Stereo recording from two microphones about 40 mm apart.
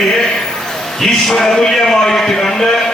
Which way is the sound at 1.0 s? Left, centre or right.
Centre.